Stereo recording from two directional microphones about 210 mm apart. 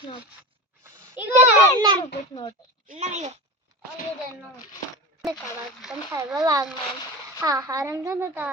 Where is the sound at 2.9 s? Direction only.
35° right (ahead or behind).